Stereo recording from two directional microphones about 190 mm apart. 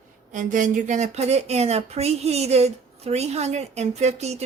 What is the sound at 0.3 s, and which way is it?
Speech, 45° right (ahead or behind).